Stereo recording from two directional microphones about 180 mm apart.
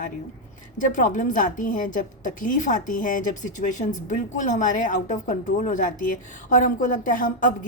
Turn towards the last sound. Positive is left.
turn(degrees=50)  # may be behind; listen again after turning